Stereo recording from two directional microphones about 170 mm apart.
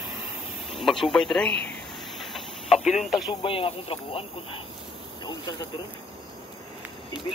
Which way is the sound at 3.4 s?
35° left (ahead or behind).